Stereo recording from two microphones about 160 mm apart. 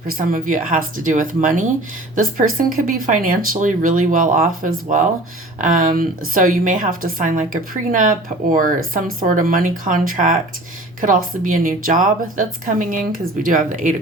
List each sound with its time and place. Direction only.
0.1 s a woman's voice: 60° right (ahead or behind)